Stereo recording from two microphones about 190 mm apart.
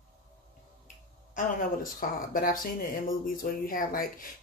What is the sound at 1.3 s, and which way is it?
Speech, 45° left (ahead or behind).